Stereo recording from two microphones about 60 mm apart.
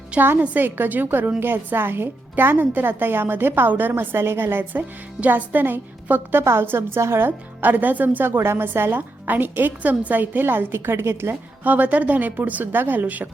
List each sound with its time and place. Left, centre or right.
0.2 s a woman's voice: right
4.8 s a woman's voice: right
6.4 s a woman's voice: right
7.3 s a woman's voice: right
11.6 s a woman's voice: right